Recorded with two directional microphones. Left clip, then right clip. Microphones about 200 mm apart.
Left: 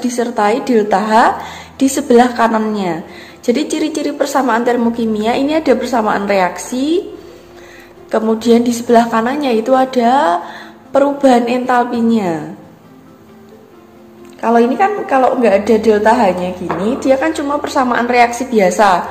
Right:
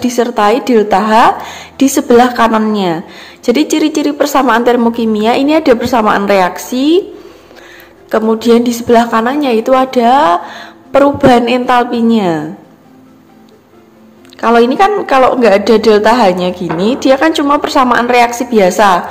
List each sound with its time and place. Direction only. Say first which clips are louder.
0.0 s a woman's voice: right 4 dB; 30° right (ahead or behind)
8.1 s a woman's voice: right 3 dB; 25° right (ahead or behind)
14.4 s a woman's voice: right 4 dB; 35° right (ahead or behind)